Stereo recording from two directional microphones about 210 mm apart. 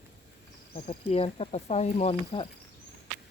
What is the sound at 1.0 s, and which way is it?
Speech, 25° left (ahead or behind).